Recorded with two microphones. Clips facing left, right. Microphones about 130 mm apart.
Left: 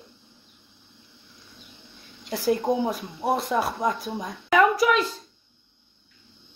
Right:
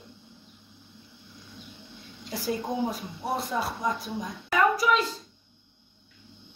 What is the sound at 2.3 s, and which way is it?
Speech, 65° left (ahead or behind).